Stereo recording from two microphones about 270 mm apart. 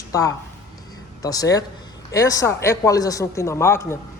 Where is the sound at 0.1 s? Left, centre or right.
Centre.